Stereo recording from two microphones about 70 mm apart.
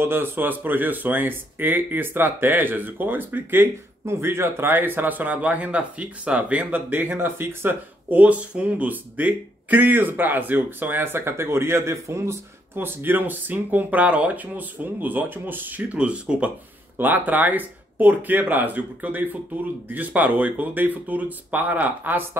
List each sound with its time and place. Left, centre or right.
0.0 s speech: right
4.0 s speech: right
8.1 s speech: right
12.7 s speech: right